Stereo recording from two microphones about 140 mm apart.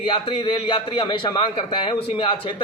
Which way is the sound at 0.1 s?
40° left (ahead or behind).